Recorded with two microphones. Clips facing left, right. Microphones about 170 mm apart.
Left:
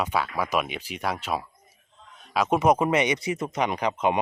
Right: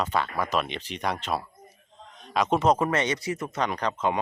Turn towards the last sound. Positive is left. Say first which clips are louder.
# left 2 dB
turn(degrees=15)  # may be behind; listen again after turning